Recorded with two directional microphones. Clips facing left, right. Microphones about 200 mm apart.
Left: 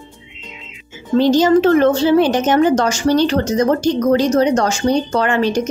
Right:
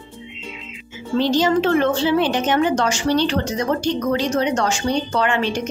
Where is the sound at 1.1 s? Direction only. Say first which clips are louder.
Left 6 dB; 45° left (ahead or behind).